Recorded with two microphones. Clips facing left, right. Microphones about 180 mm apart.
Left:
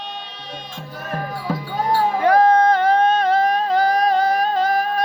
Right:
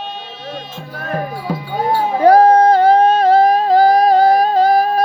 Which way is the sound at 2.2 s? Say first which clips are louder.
Right 6 dB; 35° right (ahead or behind).